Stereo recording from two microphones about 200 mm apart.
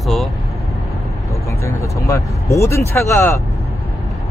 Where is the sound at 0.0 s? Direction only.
Centre (ahead or behind).